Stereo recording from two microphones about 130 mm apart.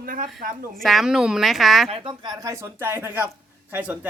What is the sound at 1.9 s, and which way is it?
Speech, 40° right (ahead or behind).